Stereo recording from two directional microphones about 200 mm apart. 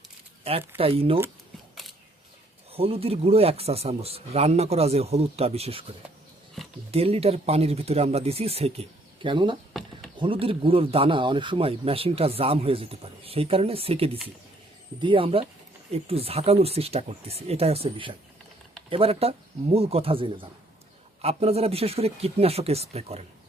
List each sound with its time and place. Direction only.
0.4 s a man's voice: 30° right (ahead or behind)
1.7 s camera: centre (ahead or behind)
2.7 s speech: 30° right (ahead or behind)
6.9 s a man's voice: 30° right (ahead or behind)